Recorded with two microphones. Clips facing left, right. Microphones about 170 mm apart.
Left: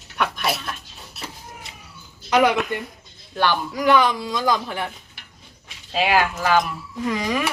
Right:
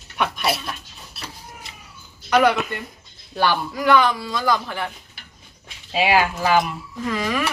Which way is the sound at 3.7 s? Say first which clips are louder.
Left 1 dB; 15° left (ahead or behind).